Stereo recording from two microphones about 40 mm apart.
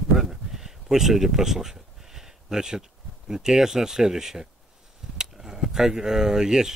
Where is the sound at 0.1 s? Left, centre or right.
Centre.